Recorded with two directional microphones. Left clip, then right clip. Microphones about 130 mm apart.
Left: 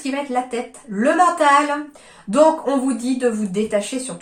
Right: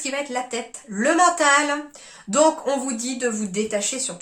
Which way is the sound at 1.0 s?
20° right (ahead or behind).